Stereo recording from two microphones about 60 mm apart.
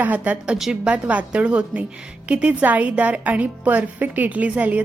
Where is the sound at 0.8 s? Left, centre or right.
Right.